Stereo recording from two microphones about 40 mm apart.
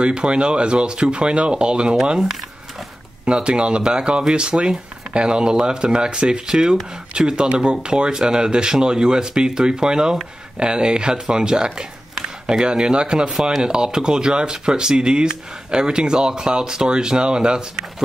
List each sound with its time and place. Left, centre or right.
0.0 s speech: right
3.3 s speech: right